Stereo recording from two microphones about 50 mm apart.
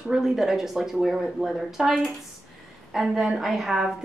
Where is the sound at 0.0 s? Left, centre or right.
Centre.